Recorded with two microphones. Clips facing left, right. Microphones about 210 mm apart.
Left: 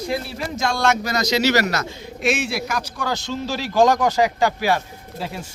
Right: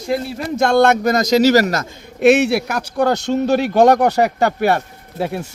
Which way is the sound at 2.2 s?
65° right (ahead or behind).